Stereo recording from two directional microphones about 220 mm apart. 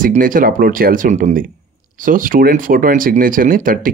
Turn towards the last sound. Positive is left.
turn(degrees=-40)  # may be behind; listen again after turning